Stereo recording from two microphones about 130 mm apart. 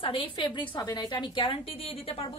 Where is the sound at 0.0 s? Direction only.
40° left (ahead or behind).